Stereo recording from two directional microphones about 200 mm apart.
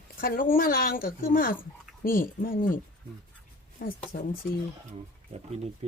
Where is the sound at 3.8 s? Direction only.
45° left (ahead or behind).